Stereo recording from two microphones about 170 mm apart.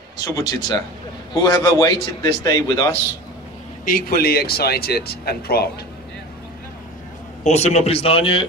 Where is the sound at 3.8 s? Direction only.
60° left (ahead or behind).